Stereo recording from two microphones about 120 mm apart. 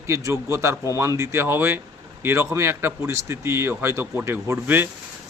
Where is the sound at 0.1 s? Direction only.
25° right (ahead or behind).